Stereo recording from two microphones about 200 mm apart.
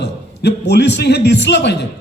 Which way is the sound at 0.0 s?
55° left (ahead or behind).